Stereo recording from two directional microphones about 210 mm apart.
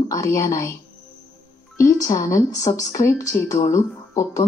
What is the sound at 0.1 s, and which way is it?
Speech, 15° left (ahead or behind).